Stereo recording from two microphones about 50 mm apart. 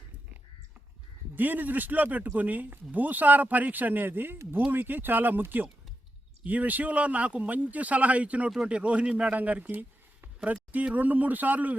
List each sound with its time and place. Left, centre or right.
1.4 s speech: right